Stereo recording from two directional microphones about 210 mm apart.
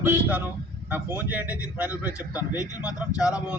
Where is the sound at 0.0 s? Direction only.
5° right (ahead or behind).